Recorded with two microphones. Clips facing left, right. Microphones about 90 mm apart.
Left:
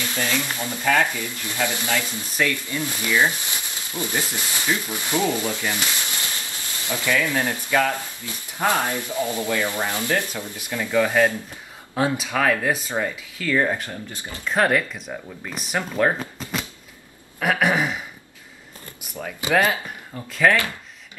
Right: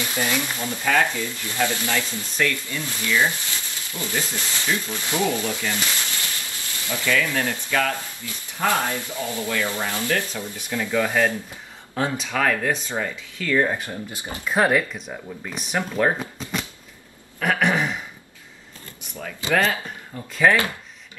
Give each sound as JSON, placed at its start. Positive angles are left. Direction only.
{"t": 0.0, "sound": "speech", "side_deg": -15}
{"t": 1.1, "sound": "speech", "side_deg": 20}
{"t": 13.8, "sound": "speech", "side_deg": -15}
{"t": 14.5, "sound": "speech", "side_deg": -5}
{"t": 17.4, "sound": "throat clearing", "side_deg": 5}
{"t": 19.1, "sound": "speech", "side_deg": 15}
{"t": 20.4, "sound": "speech", "side_deg": -5}